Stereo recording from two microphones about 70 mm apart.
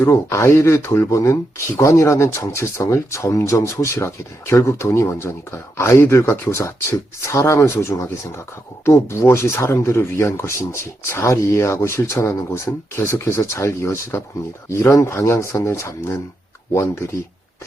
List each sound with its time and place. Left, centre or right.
0.0 s speech: left